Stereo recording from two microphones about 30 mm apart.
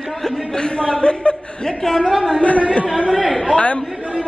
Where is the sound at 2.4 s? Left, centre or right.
Left.